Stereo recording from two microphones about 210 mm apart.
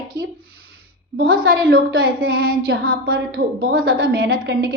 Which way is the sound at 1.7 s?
45° right (ahead or behind).